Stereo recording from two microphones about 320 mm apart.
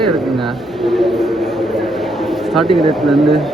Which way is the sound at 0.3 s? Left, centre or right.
Centre.